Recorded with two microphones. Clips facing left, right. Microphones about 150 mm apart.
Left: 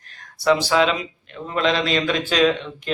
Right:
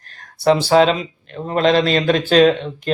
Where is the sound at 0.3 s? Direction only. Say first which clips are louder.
Right 5 dB; 30° right (ahead or behind).